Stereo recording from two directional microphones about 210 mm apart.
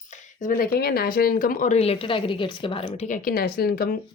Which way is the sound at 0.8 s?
45° left (ahead or behind).